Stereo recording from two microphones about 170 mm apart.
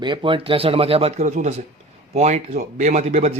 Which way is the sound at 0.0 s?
30° right (ahead or behind).